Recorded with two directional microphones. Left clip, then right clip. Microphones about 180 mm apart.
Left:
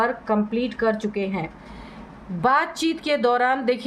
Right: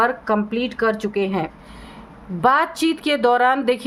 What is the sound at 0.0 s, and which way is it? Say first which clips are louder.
A woman's voice: right 3 dB; 45° right (ahead or behind).